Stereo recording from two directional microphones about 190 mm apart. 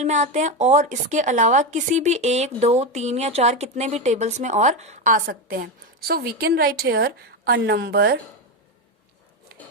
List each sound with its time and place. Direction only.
0.0 s a woman's voice: 35° right (ahead or behind); by 8.2 s 55° right (ahead or behind)